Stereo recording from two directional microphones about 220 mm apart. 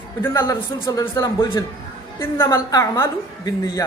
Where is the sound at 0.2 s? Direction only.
10° left (ahead or behind).